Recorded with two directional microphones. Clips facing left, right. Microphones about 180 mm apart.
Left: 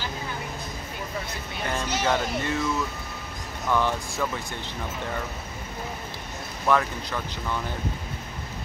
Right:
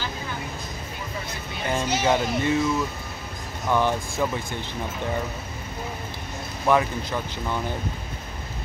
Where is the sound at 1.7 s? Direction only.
15° right (ahead or behind).